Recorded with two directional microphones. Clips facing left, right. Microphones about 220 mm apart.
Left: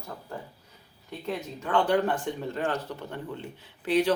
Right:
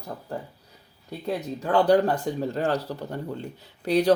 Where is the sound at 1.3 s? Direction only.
35° right (ahead or behind).